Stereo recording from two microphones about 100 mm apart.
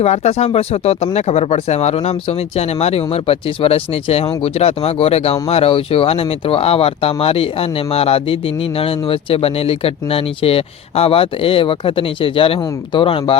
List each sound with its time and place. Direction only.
0.0 s speech: 90° left; by 13.4 s 65° left (ahead or behind)